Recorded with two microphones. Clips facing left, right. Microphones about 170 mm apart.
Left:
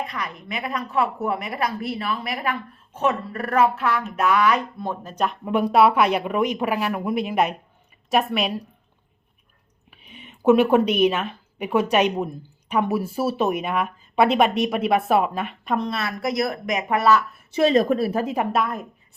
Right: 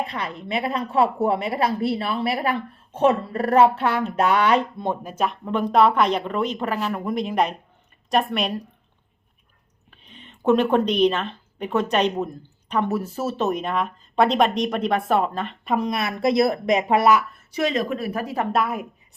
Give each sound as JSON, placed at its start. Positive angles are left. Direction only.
{"t": 0.0, "sound": "a woman's voice", "side_deg": -30}
{"t": 5.0, "sound": "a woman's voice", "side_deg": -5}
{"t": 5.5, "sound": "a woman's voice", "side_deg": 10}
{"t": 9.9, "sound": "speech", "side_deg": 10}
{"t": 15.7, "sound": "a woman's voice", "side_deg": -10}
{"t": 17.5, "sound": "speech", "side_deg": 30}
{"t": 18.5, "sound": "a woman's voice", "side_deg": -5}